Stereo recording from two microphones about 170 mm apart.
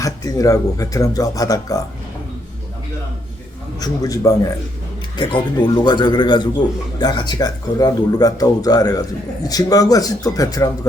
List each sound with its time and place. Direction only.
0.0 s speech: 20° left (ahead or behind)
3.8 s speech: 20° left (ahead or behind)